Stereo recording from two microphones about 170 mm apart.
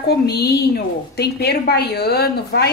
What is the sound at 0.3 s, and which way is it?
A woman's voice, 75° left (ahead or behind).